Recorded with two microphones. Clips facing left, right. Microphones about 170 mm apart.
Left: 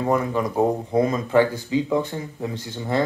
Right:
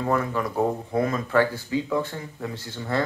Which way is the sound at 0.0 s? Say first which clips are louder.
Left 3 dB; 20° left (ahead or behind).